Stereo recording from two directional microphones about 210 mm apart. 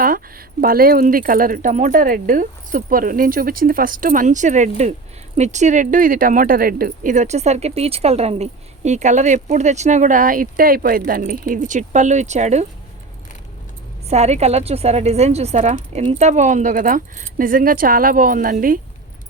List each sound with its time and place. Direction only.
0.0 s speech: 45° right (ahead or behind)
14.1 s speech: 30° right (ahead or behind)